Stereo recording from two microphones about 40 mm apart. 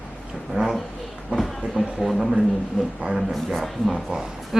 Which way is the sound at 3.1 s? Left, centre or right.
Centre.